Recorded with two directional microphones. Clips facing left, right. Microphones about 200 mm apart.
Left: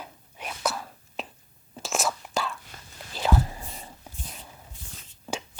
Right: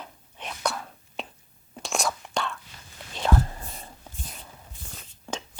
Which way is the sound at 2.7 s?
50° left (ahead or behind).